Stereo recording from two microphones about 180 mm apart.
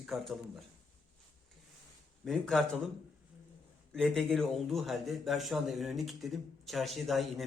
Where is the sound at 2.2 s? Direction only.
Centre (ahead or behind).